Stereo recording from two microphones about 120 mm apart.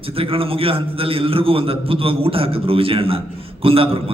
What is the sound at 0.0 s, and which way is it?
A man's voice, 50° right (ahead or behind).